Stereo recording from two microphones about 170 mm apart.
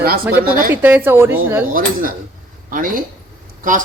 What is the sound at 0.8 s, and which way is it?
Speech, 10° right (ahead or behind).